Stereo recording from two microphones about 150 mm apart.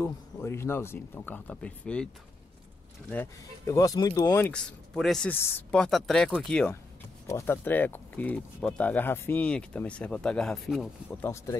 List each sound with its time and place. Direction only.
0.0 s speech: 15° left (ahead or behind)
3.1 s speech: 10° left (ahead or behind)
3.7 s speech: 25° left (ahead or behind)
4.5 s speech: 5° left (ahead or behind)
5.3 s speech: 15° left (ahead or behind)
7.2 s speech: 15° left (ahead or behind); by 10.9 s centre (ahead or behind)
11.1 s speech: 15° left (ahead or behind)